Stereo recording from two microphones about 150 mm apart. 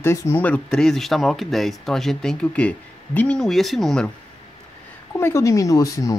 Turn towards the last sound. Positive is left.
turn(degrees=20)  # may be behind; listen again after turning